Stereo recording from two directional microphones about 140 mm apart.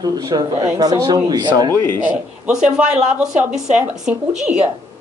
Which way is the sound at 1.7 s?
15° left (ahead or behind).